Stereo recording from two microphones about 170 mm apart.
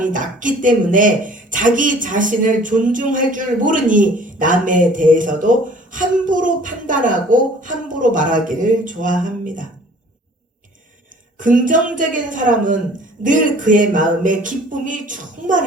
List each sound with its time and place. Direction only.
0.0 s a woman's voice: 50° right (ahead or behind)
11.3 s a woman's voice: 50° right (ahead or behind)